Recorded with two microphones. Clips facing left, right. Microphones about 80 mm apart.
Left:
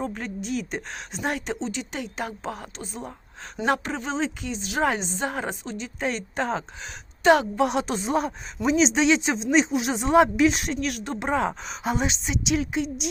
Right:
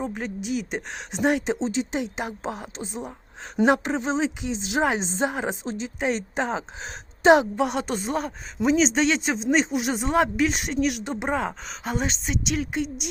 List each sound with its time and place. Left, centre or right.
0.0 s speech: centre
1.5 s speech: right; by 6.7 s centre
6.8 s speech: right
7.5 s speech: centre